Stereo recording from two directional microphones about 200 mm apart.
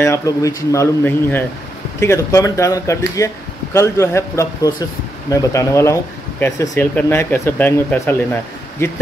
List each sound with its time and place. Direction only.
0.0 s speech: 15° left (ahead or behind)